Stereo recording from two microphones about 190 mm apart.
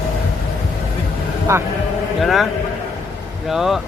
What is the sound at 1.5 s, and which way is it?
Speech, 15° right (ahead or behind).